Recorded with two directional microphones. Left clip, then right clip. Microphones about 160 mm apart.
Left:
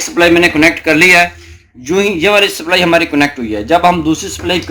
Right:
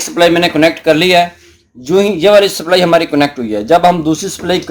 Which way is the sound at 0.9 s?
30° right (ahead or behind).